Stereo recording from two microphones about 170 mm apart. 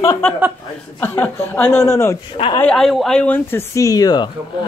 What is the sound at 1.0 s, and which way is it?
Speech, 10° left (ahead or behind).